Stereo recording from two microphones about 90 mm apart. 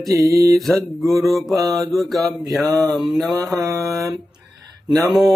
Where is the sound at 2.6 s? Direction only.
40° right (ahead or behind).